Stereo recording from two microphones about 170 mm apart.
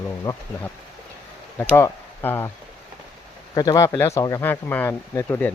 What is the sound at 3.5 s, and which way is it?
Speech, 25° left (ahead or behind).